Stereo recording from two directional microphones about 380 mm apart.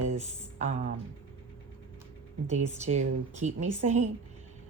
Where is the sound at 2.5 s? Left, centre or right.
Centre.